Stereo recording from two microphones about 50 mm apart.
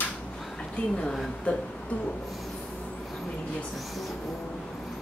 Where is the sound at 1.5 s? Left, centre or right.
Left.